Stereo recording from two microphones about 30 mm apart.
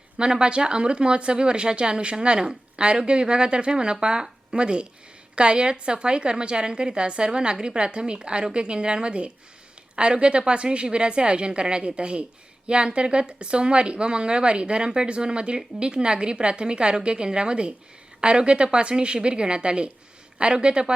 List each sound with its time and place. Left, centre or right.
0.2 s a woman's voice: right